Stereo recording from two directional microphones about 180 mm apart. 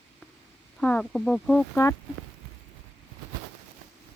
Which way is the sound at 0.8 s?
5° left (ahead or behind).